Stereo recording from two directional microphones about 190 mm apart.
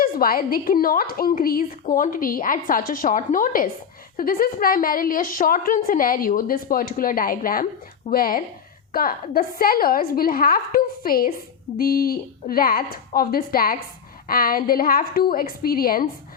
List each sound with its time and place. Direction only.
0.0 s a woman's voice: 50° left (ahead or behind)